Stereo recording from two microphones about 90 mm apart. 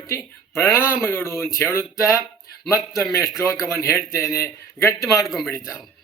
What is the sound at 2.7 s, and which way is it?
A man's voice, 35° left (ahead or behind).